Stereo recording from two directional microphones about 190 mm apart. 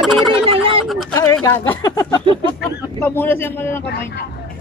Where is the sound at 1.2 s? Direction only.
15° left (ahead or behind).